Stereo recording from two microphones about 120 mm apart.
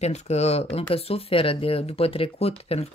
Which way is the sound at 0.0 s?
65° left (ahead or behind).